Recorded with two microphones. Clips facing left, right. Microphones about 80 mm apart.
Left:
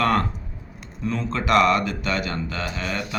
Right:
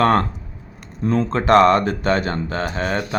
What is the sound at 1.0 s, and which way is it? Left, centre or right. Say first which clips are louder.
Speech: right 7 dB; right.